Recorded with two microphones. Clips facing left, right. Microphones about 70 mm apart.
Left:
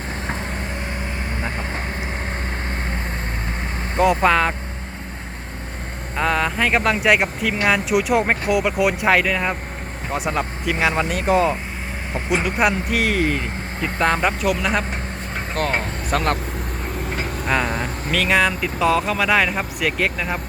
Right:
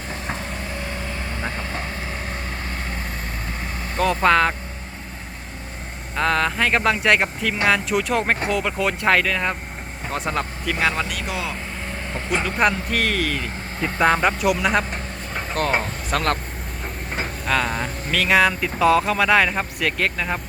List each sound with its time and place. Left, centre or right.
0.3 s vehicle: left
2.3 s vehicle: left
3.9 s speech: centre
4.2 s speech: centre
6.1 s speech: centre
11.1 s speech: left
12.1 s speech: centre
13.8 s speech: centre
16.1 s speech: left
17.4 s speech: centre